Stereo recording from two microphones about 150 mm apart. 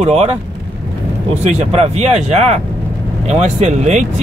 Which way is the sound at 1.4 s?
50° right (ahead or behind).